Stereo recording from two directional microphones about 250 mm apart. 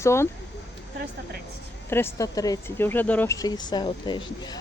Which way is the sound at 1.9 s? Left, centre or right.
Centre.